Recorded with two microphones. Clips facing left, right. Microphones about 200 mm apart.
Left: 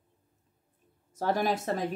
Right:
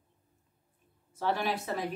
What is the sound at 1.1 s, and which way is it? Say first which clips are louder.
Speech: left 3 dB; 40° left (ahead or behind).